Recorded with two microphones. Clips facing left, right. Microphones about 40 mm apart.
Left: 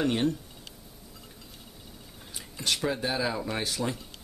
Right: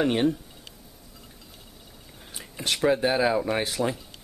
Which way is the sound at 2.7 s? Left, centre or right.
Centre.